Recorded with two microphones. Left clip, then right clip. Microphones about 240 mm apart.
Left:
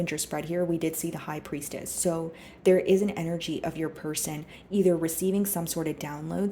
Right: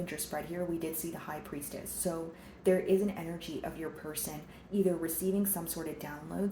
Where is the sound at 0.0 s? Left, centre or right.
Left.